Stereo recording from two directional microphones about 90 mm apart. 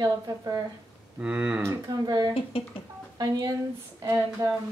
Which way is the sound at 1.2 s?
15° right (ahead or behind).